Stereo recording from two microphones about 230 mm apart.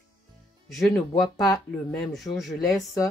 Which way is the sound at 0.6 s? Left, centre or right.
Centre.